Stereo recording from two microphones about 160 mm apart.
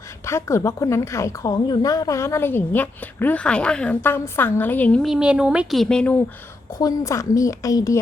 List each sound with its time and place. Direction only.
0.3 s a woman's voice: 20° left (ahead or behind)
5.0 s speech: 5° right (ahead or behind)
6.7 s a woman's voice: 20° left (ahead or behind)